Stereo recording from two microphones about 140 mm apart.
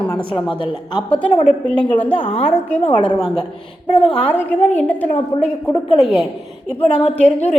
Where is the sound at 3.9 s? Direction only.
40° left (ahead or behind).